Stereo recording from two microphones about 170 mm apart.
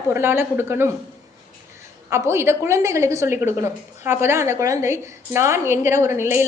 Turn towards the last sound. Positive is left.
turn(degrees=-15)  # may be behind; listen again after turning